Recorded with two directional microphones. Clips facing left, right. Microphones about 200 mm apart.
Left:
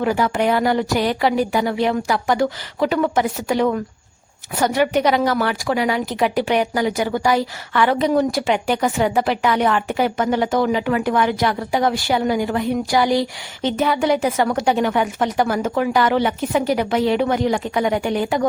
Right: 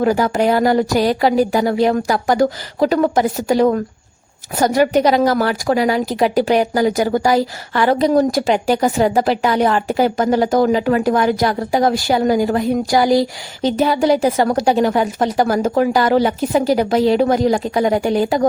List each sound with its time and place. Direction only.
0.0 s a woman's voice: 40° right (ahead or behind)